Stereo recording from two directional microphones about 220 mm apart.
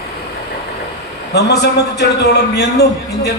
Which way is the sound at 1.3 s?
50° left (ahead or behind).